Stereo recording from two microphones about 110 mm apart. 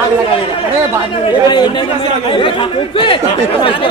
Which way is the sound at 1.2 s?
45° left (ahead or behind).